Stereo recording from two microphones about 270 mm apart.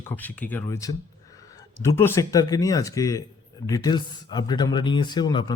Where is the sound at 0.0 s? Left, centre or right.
Centre.